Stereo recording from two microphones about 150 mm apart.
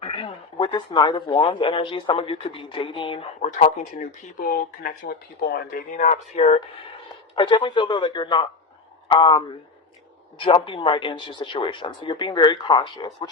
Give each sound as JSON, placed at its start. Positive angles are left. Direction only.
{"t": 0.0, "sound": "speech", "side_deg": 40}
{"t": 3.4, "sound": "speech", "side_deg": 55}
{"t": 6.0, "sound": "speech", "side_deg": 45}
{"t": 7.3, "sound": "speech", "side_deg": 30}